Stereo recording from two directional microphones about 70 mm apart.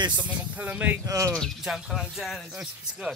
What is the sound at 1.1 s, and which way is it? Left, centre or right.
Speech, right.